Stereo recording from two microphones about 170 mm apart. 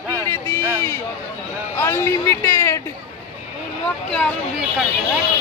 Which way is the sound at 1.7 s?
15° left (ahead or behind).